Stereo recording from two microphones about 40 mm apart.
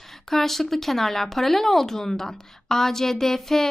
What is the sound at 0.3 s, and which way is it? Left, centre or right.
A woman's voice, centre.